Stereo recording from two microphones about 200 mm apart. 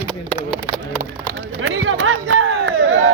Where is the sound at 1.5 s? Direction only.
75° right (ahead or behind).